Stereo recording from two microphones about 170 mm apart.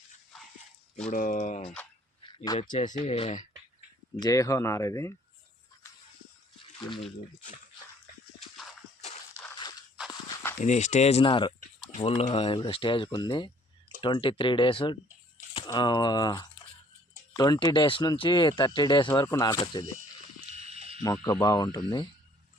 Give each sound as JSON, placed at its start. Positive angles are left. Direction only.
{"t": 1.1, "sound": "speech", "side_deg": 50}
{"t": 2.2, "sound": "a sound", "side_deg": 25}
{"t": 2.6, "sound": "speech", "side_deg": 45}
{"t": 4.2, "sound": "speech", "side_deg": 20}
{"t": 10.6, "sound": "speech", "side_deg": 45}
{"t": 20.7, "sound": "a sound", "side_deg": -40}
{"t": 21.0, "sound": "speech", "side_deg": 20}